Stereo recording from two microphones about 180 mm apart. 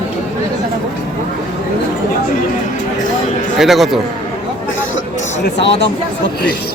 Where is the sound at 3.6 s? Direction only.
Centre (ahead or behind).